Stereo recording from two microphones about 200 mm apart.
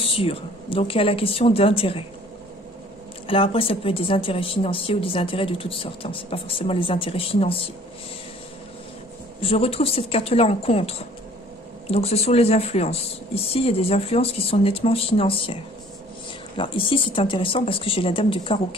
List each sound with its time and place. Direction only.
0.0 s speech: 25° left (ahead or behind)
3.3 s speech: 25° left (ahead or behind)
9.4 s speech: 30° left (ahead or behind)